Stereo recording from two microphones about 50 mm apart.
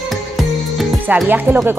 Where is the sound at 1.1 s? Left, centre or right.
Right.